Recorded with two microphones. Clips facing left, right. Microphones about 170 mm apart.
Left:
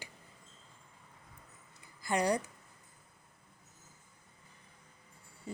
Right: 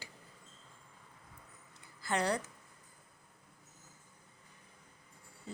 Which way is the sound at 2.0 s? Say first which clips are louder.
Left 3 dB; 15° left (ahead or behind).